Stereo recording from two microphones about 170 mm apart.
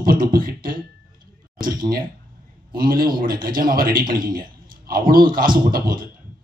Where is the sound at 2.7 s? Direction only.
60° right (ahead or behind).